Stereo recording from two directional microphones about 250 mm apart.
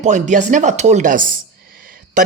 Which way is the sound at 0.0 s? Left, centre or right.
Right.